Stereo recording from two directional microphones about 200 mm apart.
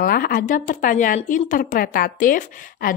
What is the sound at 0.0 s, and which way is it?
Speech, 50° left (ahead or behind).